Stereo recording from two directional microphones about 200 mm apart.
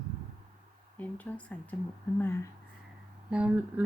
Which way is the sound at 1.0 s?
10° left (ahead or behind).